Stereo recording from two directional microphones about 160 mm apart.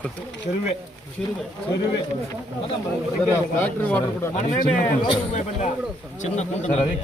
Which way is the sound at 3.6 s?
10° left (ahead or behind).